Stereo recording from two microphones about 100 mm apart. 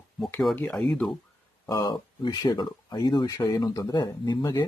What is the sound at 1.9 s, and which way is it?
Speech, 45° left (ahead or behind).